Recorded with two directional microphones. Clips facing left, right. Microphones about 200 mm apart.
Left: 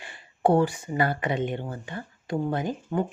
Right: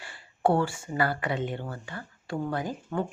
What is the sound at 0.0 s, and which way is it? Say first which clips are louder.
Speech: left 2 dB; 20° left (ahead or behind).